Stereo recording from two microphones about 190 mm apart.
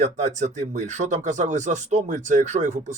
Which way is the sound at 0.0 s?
40° right (ahead or behind).